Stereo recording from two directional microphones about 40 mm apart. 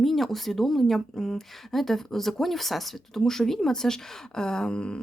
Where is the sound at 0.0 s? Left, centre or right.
Centre.